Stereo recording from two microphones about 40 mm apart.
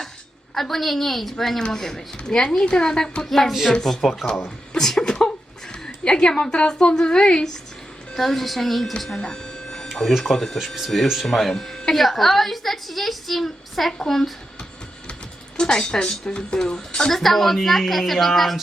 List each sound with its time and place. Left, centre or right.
0.5 s a woman's voice: centre
3.2 s a woman's voice: centre
4.2 s speech: centre
4.8 s a woman's voice: centre
9.1 s a sound: left
9.9 s a woman's voice: centre
15.5 s a woman's voice: centre
17.1 s a woman's voice: centre